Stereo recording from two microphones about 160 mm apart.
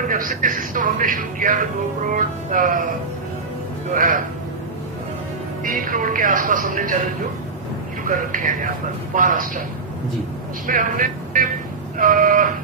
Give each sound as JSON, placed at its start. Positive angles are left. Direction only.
{"t": 0.0, "sound": "speech", "side_deg": -55}
{"t": 3.9, "sound": "speech", "side_deg": -55}
{"t": 5.6, "sound": "speech", "side_deg": -55}
{"t": 8.0, "sound": "speech", "side_deg": -55}
{"t": 10.7, "sound": "speech", "side_deg": -55}